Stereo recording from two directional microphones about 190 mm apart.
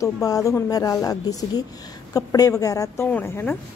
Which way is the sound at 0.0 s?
20° left (ahead or behind).